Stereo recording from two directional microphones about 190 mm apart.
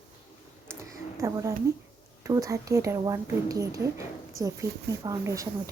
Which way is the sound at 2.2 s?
15° right (ahead or behind).